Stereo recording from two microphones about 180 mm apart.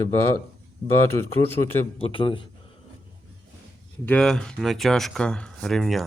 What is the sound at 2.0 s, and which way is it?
Speech, 30° left (ahead or behind).